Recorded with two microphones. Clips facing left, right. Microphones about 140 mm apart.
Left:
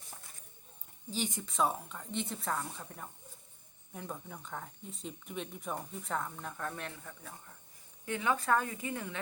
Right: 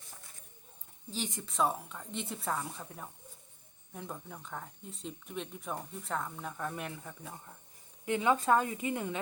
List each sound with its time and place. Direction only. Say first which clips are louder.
1.1 s a woman's voice: left 1 dB; centre (ahead or behind); by 9.2 s 20° right (ahead or behind)